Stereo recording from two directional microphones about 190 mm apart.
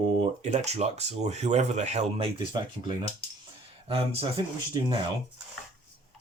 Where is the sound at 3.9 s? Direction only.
30° right (ahead or behind).